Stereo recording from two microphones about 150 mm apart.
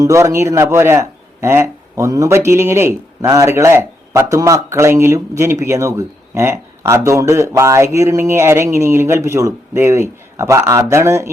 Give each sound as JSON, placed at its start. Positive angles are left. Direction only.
{"t": 0.0, "sound": "speech", "side_deg": -20}